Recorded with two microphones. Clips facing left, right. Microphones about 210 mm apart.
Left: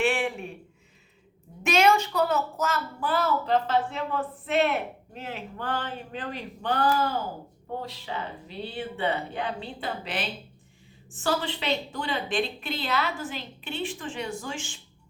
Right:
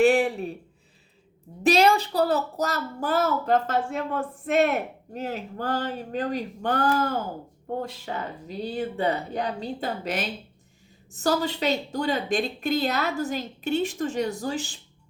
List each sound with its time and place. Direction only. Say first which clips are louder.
0.0 s a woman's voice: right 7 dB; 40° right (ahead or behind)
1.6 s a woman's voice: right 2 dB; 35° right (ahead or behind)